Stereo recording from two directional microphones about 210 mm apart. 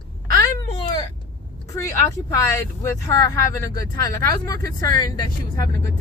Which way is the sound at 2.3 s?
15° left (ahead or behind).